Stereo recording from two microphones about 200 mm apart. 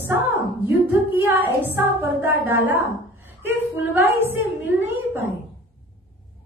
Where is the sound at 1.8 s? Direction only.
10° right (ahead or behind).